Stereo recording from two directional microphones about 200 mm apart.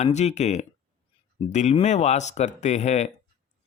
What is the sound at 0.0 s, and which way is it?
Speech, 35° left (ahead or behind).